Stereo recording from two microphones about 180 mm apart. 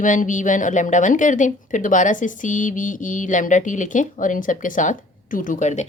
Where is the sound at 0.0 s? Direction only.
45° left (ahead or behind).